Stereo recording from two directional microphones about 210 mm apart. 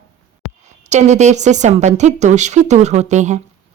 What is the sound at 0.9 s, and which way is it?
A woman's voice, 35° right (ahead or behind).